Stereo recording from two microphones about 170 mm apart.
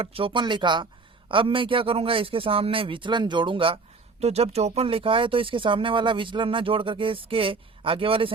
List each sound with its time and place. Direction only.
0.0 s speech: 35° right (ahead or behind)